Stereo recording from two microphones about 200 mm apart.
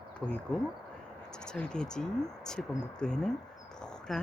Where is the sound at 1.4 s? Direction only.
5° left (ahead or behind).